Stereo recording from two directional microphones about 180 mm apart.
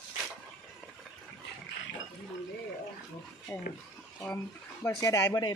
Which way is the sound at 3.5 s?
10° left (ahead or behind).